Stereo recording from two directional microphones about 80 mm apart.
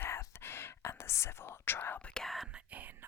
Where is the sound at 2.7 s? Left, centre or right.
Centre.